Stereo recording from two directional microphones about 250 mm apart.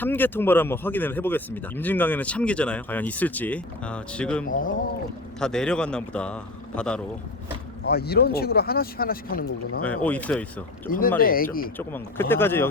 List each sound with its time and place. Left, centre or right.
0.0 s a man's voice: centre
7.9 s speech: left
9.8 s a man's voice: centre
10.8 s speech: left
11.8 s speech: centre